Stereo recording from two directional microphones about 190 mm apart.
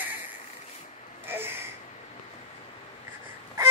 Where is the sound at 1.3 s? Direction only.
10° right (ahead or behind).